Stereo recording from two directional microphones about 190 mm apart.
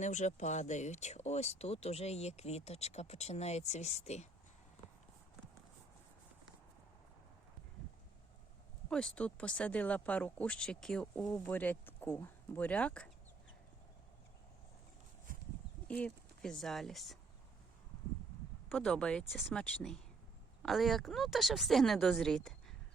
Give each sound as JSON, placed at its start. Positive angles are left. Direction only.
{"t": 0.0, "sound": "speech", "side_deg": 40}
{"t": 8.9, "sound": "speech", "side_deg": 5}
{"t": 15.9, "sound": "speech", "side_deg": 5}
{"t": 18.7, "sound": "speech", "side_deg": 5}